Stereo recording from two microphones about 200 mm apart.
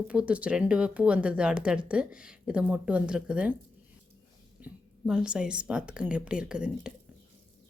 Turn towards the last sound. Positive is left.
turn(degrees=-5)  # may be behind; listen again after turning